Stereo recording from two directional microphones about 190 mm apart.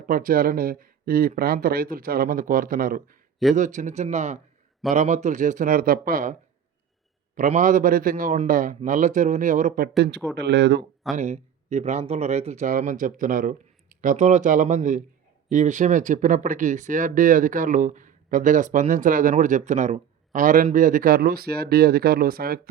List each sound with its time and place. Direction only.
0.0 s speech: 50° right (ahead or behind)
7.3 s speech: 40° right (ahead or behind)
10.3 s speech: 65° right (ahead or behind)
11.2 s speech: 35° right (ahead or behind)